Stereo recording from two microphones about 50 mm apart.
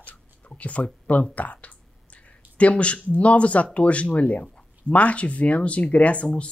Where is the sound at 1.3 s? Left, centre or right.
Left.